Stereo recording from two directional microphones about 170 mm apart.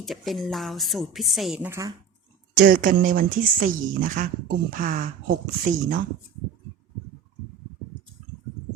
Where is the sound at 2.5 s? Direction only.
55° right (ahead or behind).